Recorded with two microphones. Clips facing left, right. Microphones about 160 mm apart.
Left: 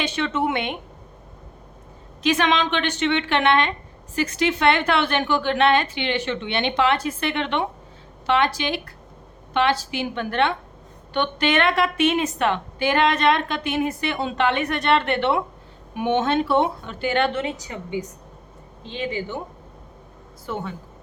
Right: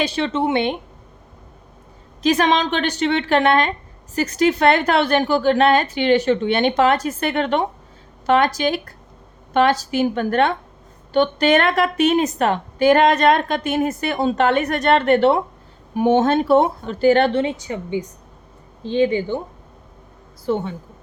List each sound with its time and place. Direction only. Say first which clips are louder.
0.0 s a woman's voice: right 3 dB; 35° right (ahead or behind)
2.2 s a woman's voice: right 3 dB; 40° right (ahead or behind)
20.4 s speech: right 8 dB; 30° right (ahead or behind)